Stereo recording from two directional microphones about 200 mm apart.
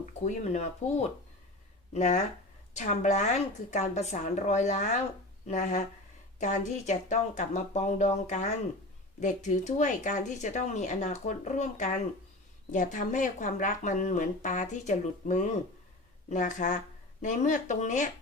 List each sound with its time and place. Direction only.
0.0 s speech: 35° left (ahead or behind)